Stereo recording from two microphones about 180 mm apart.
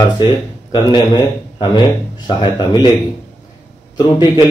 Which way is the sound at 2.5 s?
25° left (ahead or behind).